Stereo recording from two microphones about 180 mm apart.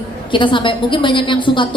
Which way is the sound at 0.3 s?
25° left (ahead or behind).